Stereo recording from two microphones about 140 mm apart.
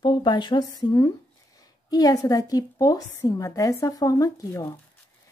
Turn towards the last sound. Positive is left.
turn(degrees=25)  # may be behind; listen again after turning